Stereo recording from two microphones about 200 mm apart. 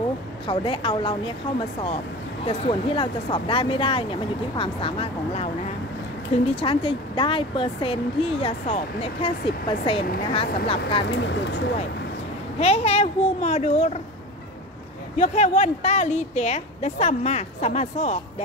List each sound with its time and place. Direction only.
0.5 s speech: 25° left (ahead or behind)
2.4 s speech: 25° left (ahead or behind)
6.6 s speech: 25° left (ahead or behind)
11.1 s speech: 60° left (ahead or behind)
12.5 s a woman's voice: 30° left (ahead or behind)
15.1 s a woman's voice: 35° left (ahead or behind)